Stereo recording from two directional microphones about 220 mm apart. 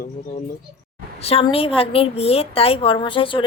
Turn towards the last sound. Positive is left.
turn(degrees=25)  # may be behind; listen again after turning